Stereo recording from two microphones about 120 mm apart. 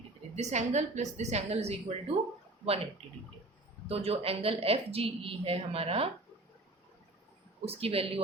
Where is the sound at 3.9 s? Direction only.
55° right (ahead or behind).